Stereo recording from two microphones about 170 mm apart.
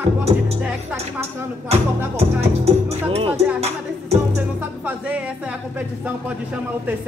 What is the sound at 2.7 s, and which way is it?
Music, 35° right (ahead or behind).